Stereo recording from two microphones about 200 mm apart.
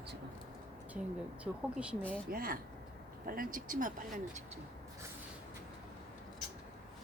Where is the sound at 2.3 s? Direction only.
45° right (ahead or behind).